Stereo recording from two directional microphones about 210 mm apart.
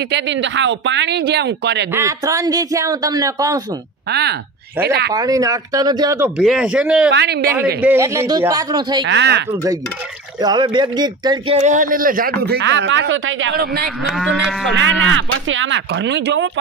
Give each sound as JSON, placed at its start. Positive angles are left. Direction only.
{"t": 0.1, "sound": "speech", "side_deg": -60}
{"t": 2.0, "sound": "a man's voice", "side_deg": -15}
{"t": 4.1, "sound": "speech", "side_deg": -50}
{"t": 5.1, "sound": "a man's voice", "side_deg": -15}
{"t": 7.1, "sound": "speech", "side_deg": -50}
{"t": 7.8, "sound": "a man's voice", "side_deg": -10}
{"t": 9.0, "sound": "speech", "side_deg": -55}
{"t": 10.4, "sound": "speech", "side_deg": -20}
{"t": 14.1, "sound": "cattle", "side_deg": 0}
{"t": 14.8, "sound": "speech", "side_deg": -65}